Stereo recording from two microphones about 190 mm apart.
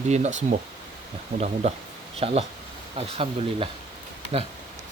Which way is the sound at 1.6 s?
35° right (ahead or behind).